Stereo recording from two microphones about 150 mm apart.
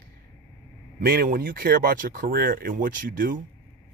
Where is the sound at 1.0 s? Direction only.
80° right.